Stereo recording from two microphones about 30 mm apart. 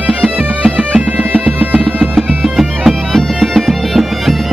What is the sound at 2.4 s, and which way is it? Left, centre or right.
Bagpipes, centre.